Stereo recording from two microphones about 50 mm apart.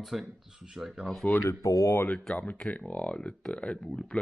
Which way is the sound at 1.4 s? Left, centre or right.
Left.